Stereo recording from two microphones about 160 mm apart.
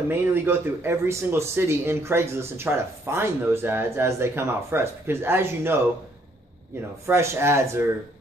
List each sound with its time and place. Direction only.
0.1 s a man's voice: 15° right (ahead or behind)
7.1 s a man's voice: 15° right (ahead or behind)